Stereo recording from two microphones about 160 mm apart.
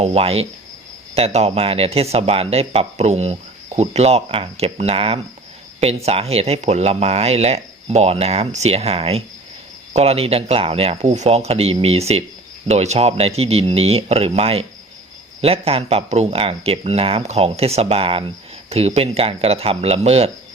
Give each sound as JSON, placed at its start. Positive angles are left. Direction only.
{"t": 0.0, "sound": "speech", "side_deg": -40}